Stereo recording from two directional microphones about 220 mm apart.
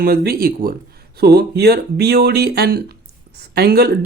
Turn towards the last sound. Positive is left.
turn(degrees=-45)  # may be behind; listen again after turning